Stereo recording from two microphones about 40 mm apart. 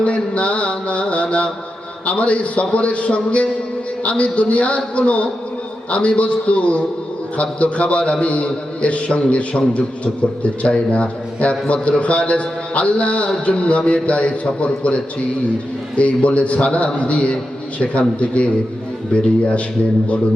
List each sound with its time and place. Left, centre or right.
0.0 s mantra: left
2.0 s a man's voice: left